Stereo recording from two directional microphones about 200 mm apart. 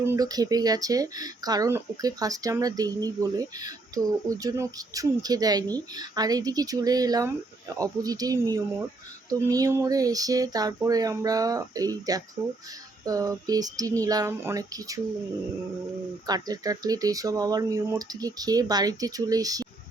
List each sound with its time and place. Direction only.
0.0 s speech: 15° right (ahead or behind)
16.2 s speech: 20° right (ahead or behind)